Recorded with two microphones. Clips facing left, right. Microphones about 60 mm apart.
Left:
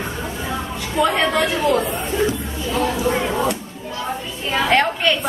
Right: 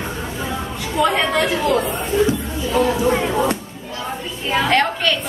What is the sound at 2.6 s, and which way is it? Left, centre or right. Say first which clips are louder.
Speech: right 3 dB; centre.